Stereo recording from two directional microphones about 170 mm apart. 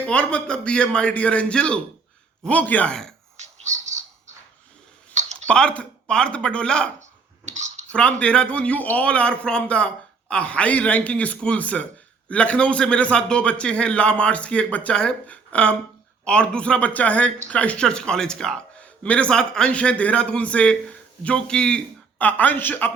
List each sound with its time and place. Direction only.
0.0 s a man's voice: 10° left (ahead or behind)
3.3 s whispering: 45° right (ahead or behind)
5.1 s clicking: 45° right (ahead or behind)
5.5 s speech: 5° left (ahead or behind)
7.4 s clicking: 45° right (ahead or behind)
7.9 s a man's voice: 5° left (ahead or behind)